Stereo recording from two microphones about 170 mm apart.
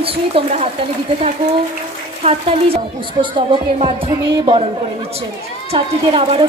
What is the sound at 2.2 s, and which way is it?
Speech, 40° right (ahead or behind).